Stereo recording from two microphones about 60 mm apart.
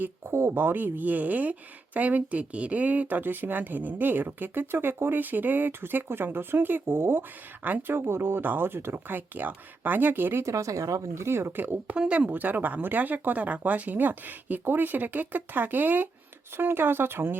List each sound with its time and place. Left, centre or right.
0.3 s speech: right
10.4 s speech: right
11.9 s speech: centre
12.3 s speech: right